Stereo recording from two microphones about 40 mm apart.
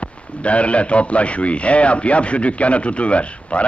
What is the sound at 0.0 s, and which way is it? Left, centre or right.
Speech, left.